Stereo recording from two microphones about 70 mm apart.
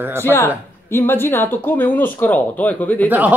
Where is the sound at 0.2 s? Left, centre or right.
Left.